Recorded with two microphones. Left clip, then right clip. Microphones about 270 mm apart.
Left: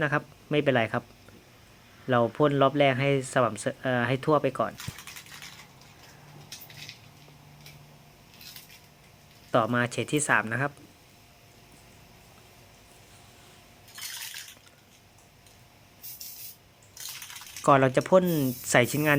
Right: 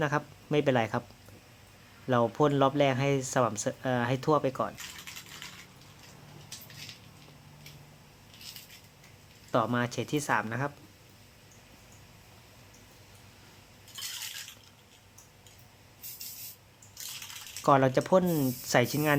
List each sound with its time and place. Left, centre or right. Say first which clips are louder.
0.0 s speech: left 3 dB; centre
2.0 s speech: left 2 dB; centre
9.5 s speech: left 4 dB; centre
17.6 s speech: left 3 dB; centre